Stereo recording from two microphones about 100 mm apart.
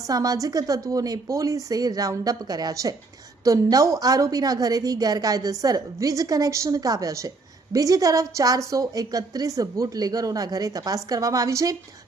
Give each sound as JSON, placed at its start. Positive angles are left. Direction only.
{"t": 0.0, "sound": "a woman's voice", "side_deg": -35}